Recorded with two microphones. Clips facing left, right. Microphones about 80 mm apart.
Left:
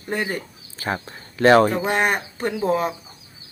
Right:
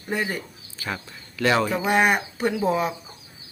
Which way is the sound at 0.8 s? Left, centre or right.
Left.